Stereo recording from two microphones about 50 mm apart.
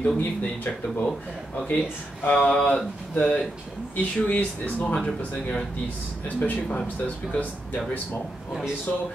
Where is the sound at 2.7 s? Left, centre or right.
Left.